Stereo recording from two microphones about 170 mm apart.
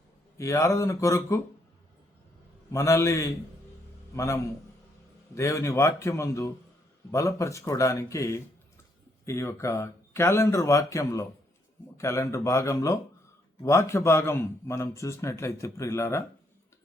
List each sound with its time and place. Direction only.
0.3 s a man's voice: 15° left (ahead or behind)
2.7 s a man's voice: 15° left (ahead or behind)